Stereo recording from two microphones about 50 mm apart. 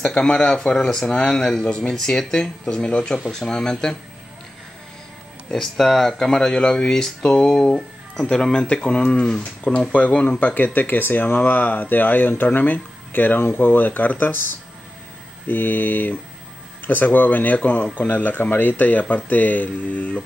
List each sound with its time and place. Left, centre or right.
0.0 s speech: centre
5.5 s speech: centre
9.8 s speech: left